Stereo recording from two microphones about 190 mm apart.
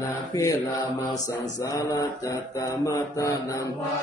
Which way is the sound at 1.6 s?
15° left (ahead or behind).